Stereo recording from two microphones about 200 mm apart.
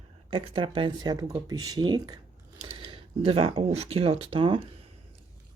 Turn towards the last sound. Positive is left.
turn(degrees=-25)  # may be behind; listen again after turning